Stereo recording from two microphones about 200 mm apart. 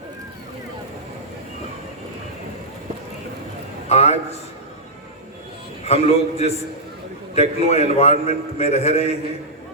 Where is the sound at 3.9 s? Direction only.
30° left (ahead or behind).